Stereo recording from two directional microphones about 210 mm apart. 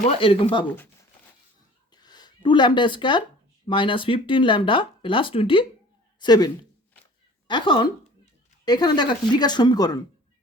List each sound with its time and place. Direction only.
0.1 s speech: 25° left (ahead or behind)
1.9 s a sound: 20° left (ahead or behind)
3.7 s speech: 25° left (ahead or behind)